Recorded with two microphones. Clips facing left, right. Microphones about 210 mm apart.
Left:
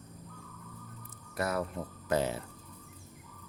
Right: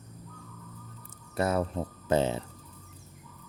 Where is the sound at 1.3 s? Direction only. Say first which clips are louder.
Right 5 dB; 25° right (ahead or behind).